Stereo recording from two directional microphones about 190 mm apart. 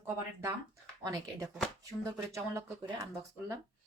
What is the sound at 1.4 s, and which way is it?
Speech, 5° right (ahead or behind).